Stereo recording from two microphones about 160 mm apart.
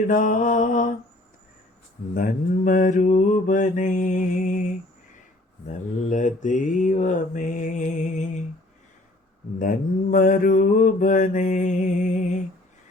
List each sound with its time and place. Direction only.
0.1 s mantra: 55° left (ahead or behind)
2.1 s mantra: 55° left (ahead or behind)
9.6 s mantra: 60° left (ahead or behind)